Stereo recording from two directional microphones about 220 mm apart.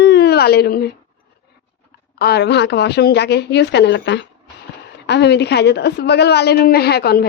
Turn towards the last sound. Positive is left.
turn(degrees=45)  # may be behind; listen again after turning